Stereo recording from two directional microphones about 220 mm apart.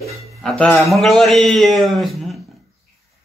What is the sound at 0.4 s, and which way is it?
A man's voice, 5° left (ahead or behind).